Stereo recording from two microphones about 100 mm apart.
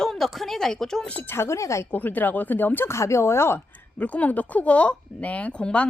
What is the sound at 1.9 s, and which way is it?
Speech, 20° left (ahead or behind).